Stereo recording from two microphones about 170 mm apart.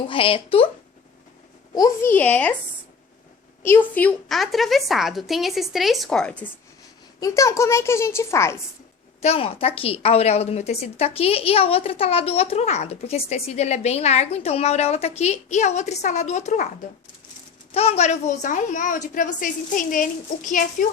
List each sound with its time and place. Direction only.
0.1 s a woman's voice: 30° left (ahead or behind)
1.7 s a woman's voice: 20° left (ahead or behind)
3.6 s a woman's voice: 15° left (ahead or behind)
7.2 s a woman's voice: 20° left (ahead or behind)
9.2 s a woman's voice: 35° left (ahead or behind)
17.7 s a woman's voice: 35° left (ahead or behind)